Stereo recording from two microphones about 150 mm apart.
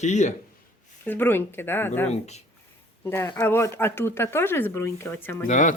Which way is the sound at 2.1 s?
45° left (ahead or behind).